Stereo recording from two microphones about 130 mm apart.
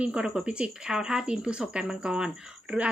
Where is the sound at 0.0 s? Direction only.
10° right (ahead or behind).